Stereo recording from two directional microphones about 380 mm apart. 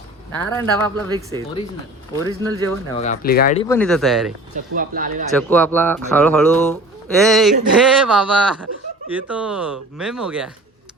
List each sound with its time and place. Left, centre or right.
0.5 s speech: centre
2.2 s speech: centre
2.6 s speech: centre
4.5 s speech: right
5.3 s speech: centre